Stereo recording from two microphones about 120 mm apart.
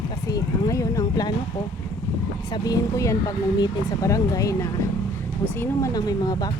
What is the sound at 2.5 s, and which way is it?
Speech, 30° left (ahead or behind).